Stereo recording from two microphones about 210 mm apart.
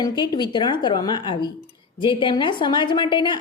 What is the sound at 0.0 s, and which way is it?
A woman's voice, 20° left (ahead or behind).